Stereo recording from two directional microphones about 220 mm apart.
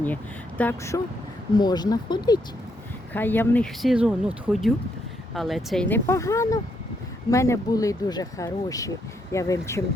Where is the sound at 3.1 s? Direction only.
10° left (ahead or behind).